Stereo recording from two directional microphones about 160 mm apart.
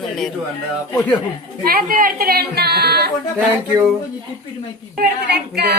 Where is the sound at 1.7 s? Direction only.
65° right (ahead or behind); by 3.1 s 85° right.